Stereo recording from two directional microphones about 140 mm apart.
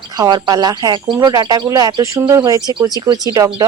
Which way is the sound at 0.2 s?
30° right (ahead or behind).